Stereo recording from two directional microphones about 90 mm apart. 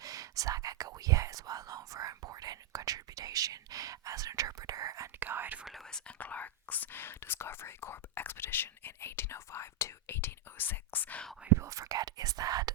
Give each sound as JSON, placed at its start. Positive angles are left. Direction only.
{"t": 0.0, "sound": "whispering", "side_deg": -40}
{"t": 5.2, "sound": "whispering", "side_deg": -20}
{"t": 5.6, "sound": "whispering", "side_deg": 0}
{"t": 6.1, "sound": "whispering", "side_deg": 15}
{"t": 11.5, "sound": "whispering", "side_deg": -35}